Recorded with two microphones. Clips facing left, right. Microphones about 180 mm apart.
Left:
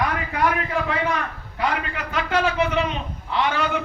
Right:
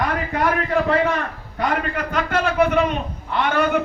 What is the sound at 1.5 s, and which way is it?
A man's voice, 45° right (ahead or behind).